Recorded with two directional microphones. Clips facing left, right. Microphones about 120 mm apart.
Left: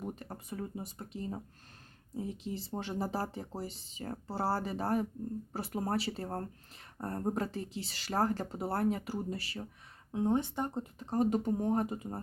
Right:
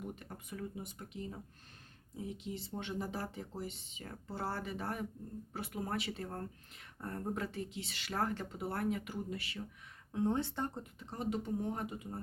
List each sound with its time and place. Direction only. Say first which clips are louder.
0.0 s speech: left 4 dB; 40° left (ahead or behind)
10.1 s speech: left 3 dB; 20° left (ahead or behind)
11.0 s speech: left 8 dB; 45° left (ahead or behind)